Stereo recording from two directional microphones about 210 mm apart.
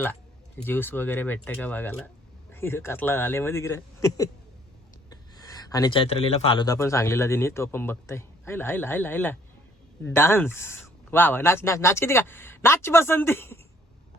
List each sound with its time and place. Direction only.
0.6 s a man's voice: 10° left (ahead or behind)
5.4 s a man's voice: 20° left (ahead or behind)